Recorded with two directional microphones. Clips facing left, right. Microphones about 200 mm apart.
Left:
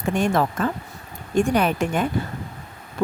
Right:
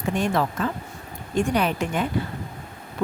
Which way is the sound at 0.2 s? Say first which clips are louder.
Left 3 dB; 50° left (ahead or behind).